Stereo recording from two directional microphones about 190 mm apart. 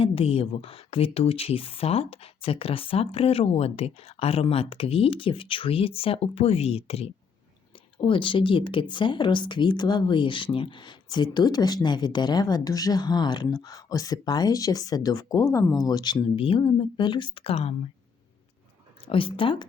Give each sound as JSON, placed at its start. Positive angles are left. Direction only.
{"t": 0.0, "sound": "speech", "side_deg": 30}
{"t": 19.0, "sound": "speech", "side_deg": 30}